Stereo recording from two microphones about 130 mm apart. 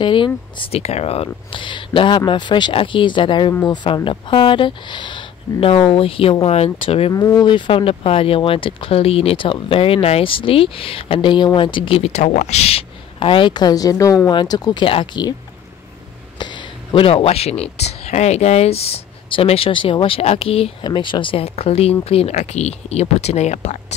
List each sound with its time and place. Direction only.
0.0 s speech: 40° left (ahead or behind)
7.1 s speech: 25° left (ahead or behind)
7.4 s speech: 40° left (ahead or behind)
16.3 s speech: 35° left (ahead or behind)
20.8 s speech: 35° left (ahead or behind); by 23.8 s 60° left (ahead or behind)